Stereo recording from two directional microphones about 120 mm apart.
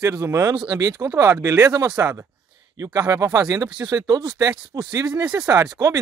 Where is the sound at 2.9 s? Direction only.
30° right (ahead or behind).